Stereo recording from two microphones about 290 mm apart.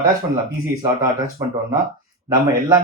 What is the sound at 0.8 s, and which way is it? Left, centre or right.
Speech, centre.